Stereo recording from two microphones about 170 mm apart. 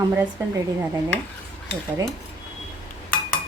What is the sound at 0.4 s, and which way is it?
Speech, 15° right (ahead or behind).